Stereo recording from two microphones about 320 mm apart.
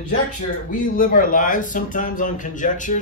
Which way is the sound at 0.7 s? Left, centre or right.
Left.